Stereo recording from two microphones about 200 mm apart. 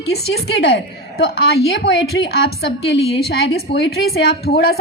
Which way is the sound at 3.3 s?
55° left (ahead or behind).